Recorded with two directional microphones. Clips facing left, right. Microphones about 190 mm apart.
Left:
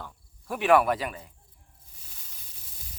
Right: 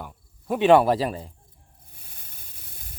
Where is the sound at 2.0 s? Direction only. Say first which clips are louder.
Right 5 dB; 60° right (ahead or behind).